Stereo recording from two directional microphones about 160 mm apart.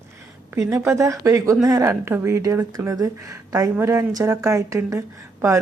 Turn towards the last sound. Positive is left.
turn(degrees=-20)  # may be behind; listen again after turning